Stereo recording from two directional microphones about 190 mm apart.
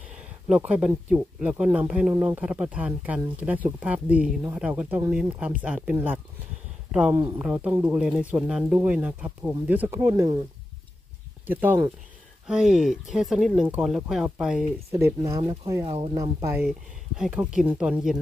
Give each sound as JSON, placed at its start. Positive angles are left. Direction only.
{"t": 0.2, "sound": "a sound", "side_deg": -5}
{"t": 1.1, "sound": "speech", "side_deg": -5}
{"t": 11.4, "sound": "speech", "side_deg": -10}
{"t": 16.2, "sound": "speech", "side_deg": -15}
{"t": 17.2, "sound": "speech", "side_deg": -5}